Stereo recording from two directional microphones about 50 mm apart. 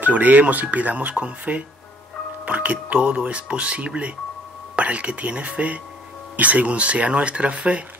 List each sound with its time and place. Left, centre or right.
0.0 s speech: right